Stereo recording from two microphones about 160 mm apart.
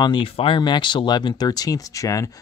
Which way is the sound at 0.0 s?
30° left (ahead or behind).